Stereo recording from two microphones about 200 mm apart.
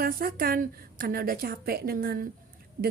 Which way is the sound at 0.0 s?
50° right (ahead or behind).